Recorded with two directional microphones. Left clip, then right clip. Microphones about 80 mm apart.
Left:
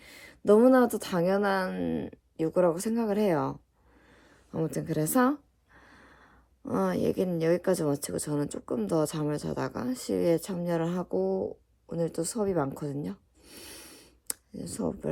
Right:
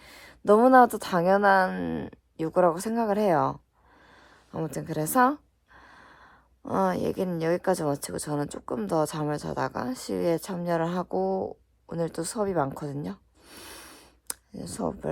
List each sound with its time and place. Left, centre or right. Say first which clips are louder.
0.0 s speech: right 1 dB; right
1.7 s speech: even; right
4.3 s a sound: left 1 dB; right
7.3 s a woman's voice: right 2 dB; right
13.4 s a sound: right 2 dB; right
14.5 s speech: right 2 dB; right